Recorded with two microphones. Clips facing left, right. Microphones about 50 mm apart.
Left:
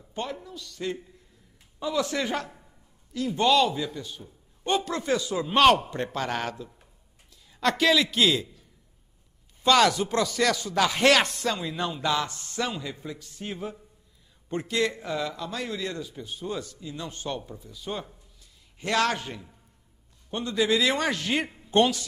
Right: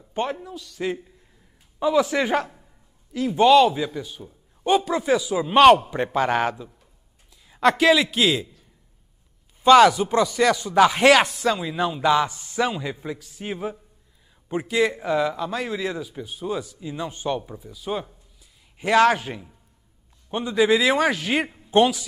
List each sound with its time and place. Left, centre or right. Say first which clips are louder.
0.1 s a man's voice: right 7 dB; right
0.7 s a man's voice: right 5 dB; centre
3.1 s speech: right 4 dB; right
3.3 s a man's voice: right 7 dB; centre
9.6 s a man's voice: right 7 dB; centre
11.2 s a man's voice: right 5 dB; centre